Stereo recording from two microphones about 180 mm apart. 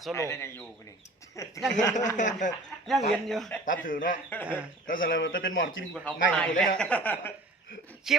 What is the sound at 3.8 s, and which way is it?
Speech, 50° left (ahead or behind).